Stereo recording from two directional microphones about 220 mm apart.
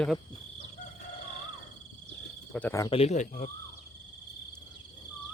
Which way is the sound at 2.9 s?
30° left (ahead or behind).